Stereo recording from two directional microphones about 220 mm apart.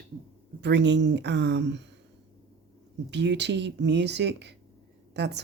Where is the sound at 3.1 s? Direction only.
50° right (ahead or behind).